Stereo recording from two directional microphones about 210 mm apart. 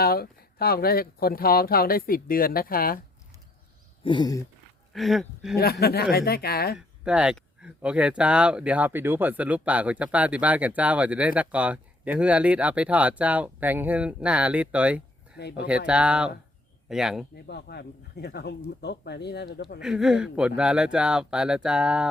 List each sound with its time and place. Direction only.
0.0 s speech: 45° left (ahead or behind)
4.0 s a sound: 20° left (ahead or behind)
4.9 s speech: centre (ahead or behind)
5.8 s speech: 50° left (ahead or behind)
6.7 s speech: 5° right (ahead or behind)
15.4 s speech: 50° left (ahead or behind)
15.9 s speech: 5° right (ahead or behind)
17.3 s speech: 50° left (ahead or behind)
19.8 s speech: 5° right (ahead or behind)